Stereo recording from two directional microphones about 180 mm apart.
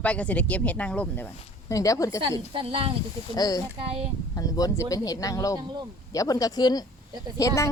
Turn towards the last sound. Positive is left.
turn(degrees=20)  # may be behind; listen again after turning